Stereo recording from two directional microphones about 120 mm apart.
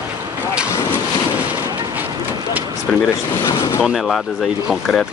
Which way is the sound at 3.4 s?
25° left (ahead or behind).